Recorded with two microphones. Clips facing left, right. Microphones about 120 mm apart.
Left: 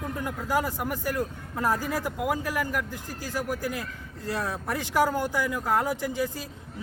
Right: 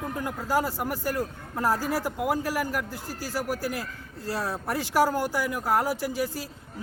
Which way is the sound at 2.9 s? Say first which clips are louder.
Right 1 dB; 20° left (ahead or behind).